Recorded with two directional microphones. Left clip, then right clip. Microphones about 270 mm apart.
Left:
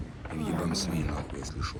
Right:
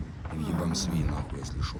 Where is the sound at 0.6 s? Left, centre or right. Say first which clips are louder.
Right 2 dB; right.